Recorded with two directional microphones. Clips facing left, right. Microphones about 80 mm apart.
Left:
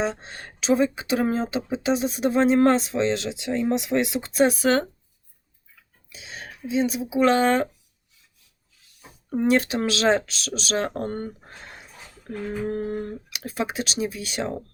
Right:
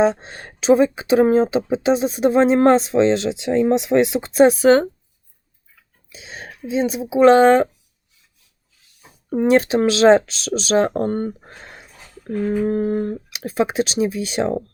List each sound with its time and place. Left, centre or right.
0.0 s speech: right
6.1 s speech: right
9.3 s speech: right
12.5 s speech: right